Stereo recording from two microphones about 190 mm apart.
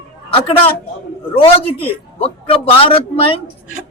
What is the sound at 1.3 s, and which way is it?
A man's voice, 30° left (ahead or behind).